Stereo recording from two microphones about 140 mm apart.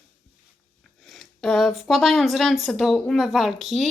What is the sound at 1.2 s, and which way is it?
Speech, centre (ahead or behind).